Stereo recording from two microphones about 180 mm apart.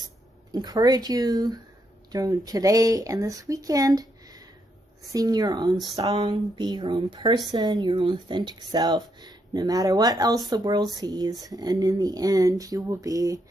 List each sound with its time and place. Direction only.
0.5 s speech: 20° right (ahead or behind)